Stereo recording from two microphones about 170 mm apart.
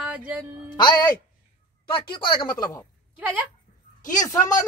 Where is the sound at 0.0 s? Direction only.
5° right (ahead or behind).